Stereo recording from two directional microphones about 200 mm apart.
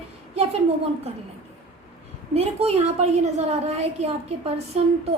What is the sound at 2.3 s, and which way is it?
A woman's voice, 30° right (ahead or behind).